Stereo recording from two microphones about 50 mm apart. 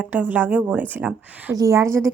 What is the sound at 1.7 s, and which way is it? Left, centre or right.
Speech, right.